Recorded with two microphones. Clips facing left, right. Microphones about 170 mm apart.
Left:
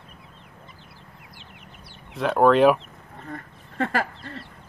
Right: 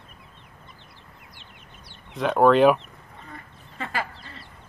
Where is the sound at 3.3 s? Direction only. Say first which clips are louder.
Left 9 dB; 60° left (ahead or behind).